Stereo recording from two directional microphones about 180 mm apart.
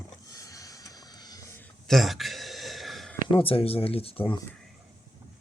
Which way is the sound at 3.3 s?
30° left (ahead or behind).